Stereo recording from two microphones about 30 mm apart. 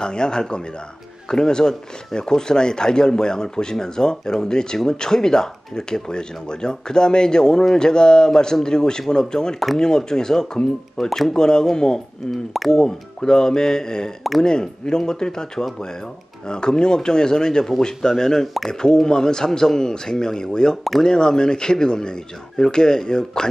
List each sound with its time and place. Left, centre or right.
0.0 s speech: left; by 11.3 s centre
11.3 s speech: left